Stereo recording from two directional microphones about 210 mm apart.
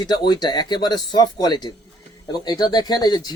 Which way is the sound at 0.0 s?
20° left (ahead or behind).